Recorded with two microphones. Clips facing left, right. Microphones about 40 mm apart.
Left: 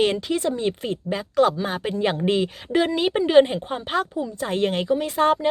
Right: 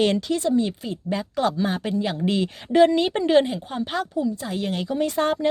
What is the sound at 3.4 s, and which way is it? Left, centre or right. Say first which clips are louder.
Speech: even; left.